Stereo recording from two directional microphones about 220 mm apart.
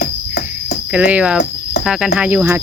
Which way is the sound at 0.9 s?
5° right (ahead or behind).